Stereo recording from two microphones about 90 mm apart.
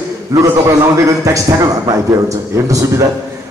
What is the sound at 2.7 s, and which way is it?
Speech, 40° right (ahead or behind).